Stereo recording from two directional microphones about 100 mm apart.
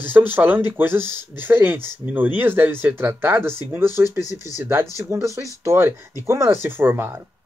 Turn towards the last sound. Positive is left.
turn(degrees=-25)  # may be behind; listen again after turning